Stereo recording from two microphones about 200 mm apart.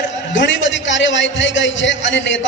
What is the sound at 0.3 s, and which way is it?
A man's voice, 65° left (ahead or behind).